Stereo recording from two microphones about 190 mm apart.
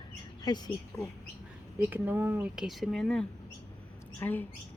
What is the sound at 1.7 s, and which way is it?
Speech, 10° right (ahead or behind).